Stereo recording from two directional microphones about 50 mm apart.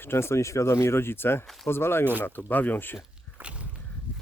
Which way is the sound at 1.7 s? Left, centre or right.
Left.